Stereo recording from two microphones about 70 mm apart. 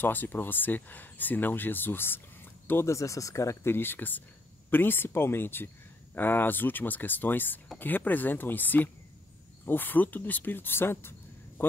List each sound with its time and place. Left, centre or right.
0.0 s speech: left
2.7 s speech: left